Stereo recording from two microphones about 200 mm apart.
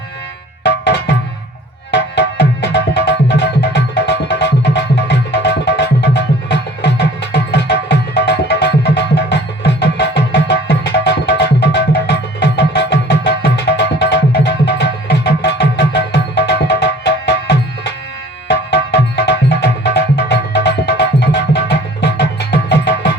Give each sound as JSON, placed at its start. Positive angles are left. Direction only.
{"t": 0.6, "sound": "tabla", "side_deg": 60}
{"t": 1.9, "sound": "music", "side_deg": 60}